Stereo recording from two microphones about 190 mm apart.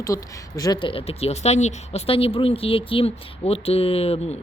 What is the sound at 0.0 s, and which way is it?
Speech, 20° left (ahead or behind).